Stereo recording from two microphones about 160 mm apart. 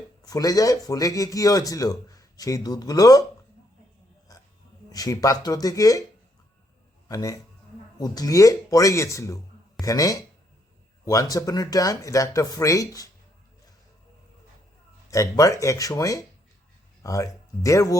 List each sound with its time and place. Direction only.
0.3 s speech: 20° left (ahead or behind)
4.9 s speech: 20° left (ahead or behind)
7.1 s speech: 20° left (ahead or behind)
15.1 s speech: 20° left (ahead or behind)